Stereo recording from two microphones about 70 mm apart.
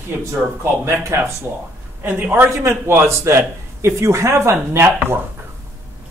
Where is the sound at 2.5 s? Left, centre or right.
Right.